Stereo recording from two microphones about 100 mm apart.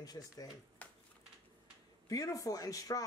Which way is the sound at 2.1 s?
35° left (ahead or behind).